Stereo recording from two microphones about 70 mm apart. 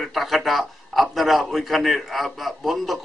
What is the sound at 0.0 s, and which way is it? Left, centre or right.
A man's voice, centre.